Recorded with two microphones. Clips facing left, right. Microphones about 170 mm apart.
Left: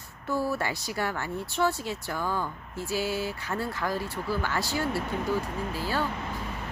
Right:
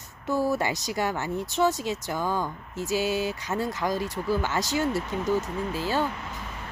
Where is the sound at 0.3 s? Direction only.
15° right (ahead or behind).